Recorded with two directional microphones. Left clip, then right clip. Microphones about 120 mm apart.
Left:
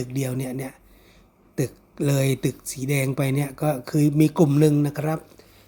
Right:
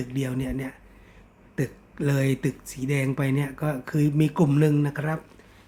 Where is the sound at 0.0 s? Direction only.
45° left (ahead or behind).